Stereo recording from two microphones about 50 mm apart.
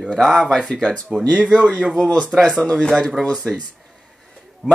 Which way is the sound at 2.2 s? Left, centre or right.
Centre.